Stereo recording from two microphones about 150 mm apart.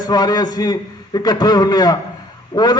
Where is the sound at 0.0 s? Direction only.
25° left (ahead or behind).